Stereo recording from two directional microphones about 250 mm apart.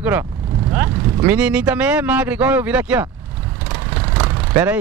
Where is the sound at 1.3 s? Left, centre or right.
Centre.